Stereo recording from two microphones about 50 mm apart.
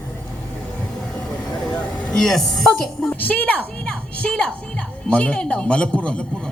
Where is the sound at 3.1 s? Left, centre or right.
Left.